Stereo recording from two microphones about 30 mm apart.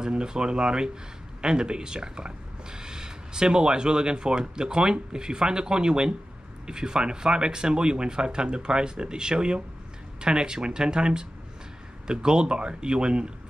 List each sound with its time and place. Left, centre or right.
0.0 s speech: right